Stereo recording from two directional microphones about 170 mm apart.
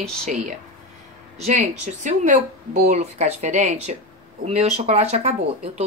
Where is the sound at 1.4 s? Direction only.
45° right (ahead or behind).